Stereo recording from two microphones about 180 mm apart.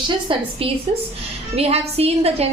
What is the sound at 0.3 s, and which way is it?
Speech, 30° right (ahead or behind).